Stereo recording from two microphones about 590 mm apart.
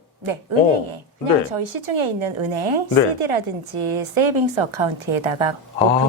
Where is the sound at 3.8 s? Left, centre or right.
Right.